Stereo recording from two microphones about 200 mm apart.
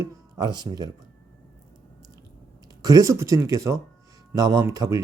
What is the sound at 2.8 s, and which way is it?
A man's voice, 15° right (ahead or behind).